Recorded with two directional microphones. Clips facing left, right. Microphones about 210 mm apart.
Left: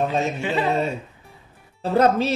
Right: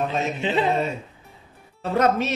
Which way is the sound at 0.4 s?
20° right (ahead or behind).